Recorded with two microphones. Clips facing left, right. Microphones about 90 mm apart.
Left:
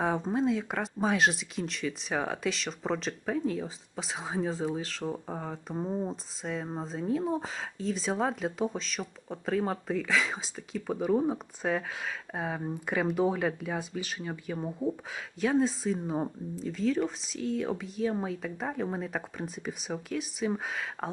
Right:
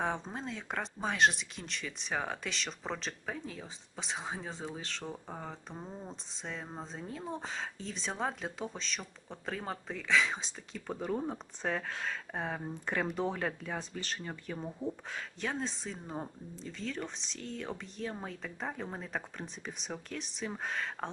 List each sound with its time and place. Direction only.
0.0 s speech: 5° left (ahead or behind)
5.7 s speech: 20° left (ahead or behind)
6.1 s speech: 5° left (ahead or behind)
15.1 s speech: 5° left (ahead or behind)